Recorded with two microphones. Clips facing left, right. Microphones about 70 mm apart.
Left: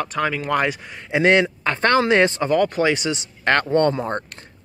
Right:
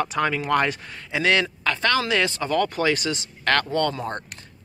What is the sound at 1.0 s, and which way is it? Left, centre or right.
Speech, left.